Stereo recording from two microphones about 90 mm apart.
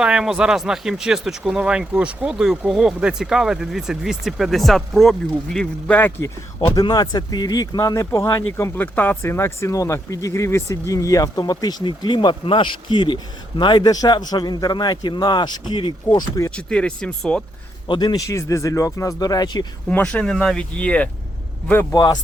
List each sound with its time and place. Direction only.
0.0 s speech: 10° right (ahead or behind)
6.0 s a man's voice: 20° left (ahead or behind)
6.8 s speech: 50° left (ahead or behind)
8.7 s speech: 20° left (ahead or behind); by 16.4 s 55° left (ahead or behind)
16.6 s speech: 10° left (ahead or behind)
17.8 s speech: 60° left (ahead or behind)
18.2 s speech: 35° left (ahead or behind)
19.9 s speech: 15° left (ahead or behind)
21.9 s speech: 50° left (ahead or behind)